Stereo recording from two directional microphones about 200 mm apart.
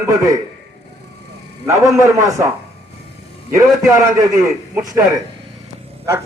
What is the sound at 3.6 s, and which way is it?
Speech, 15° right (ahead or behind).